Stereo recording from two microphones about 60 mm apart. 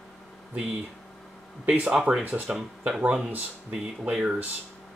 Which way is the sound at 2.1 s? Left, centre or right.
Right.